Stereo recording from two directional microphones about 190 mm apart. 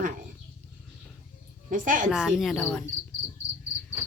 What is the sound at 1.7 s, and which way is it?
Speech, 45° right (ahead or behind).